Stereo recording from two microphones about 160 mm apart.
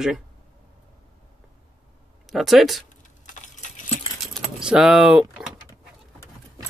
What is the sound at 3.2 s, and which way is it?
Keys jangling, 50° left (ahead or behind).